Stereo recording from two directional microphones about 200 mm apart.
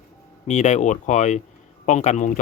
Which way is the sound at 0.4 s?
35° left (ahead or behind).